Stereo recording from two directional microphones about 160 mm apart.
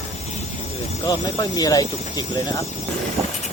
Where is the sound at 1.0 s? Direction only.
25° left (ahead or behind).